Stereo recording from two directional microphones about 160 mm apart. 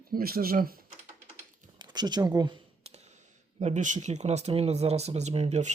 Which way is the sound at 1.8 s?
25° right (ahead or behind).